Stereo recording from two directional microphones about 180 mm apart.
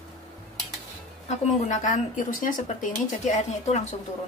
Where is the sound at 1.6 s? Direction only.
45° left (ahead or behind).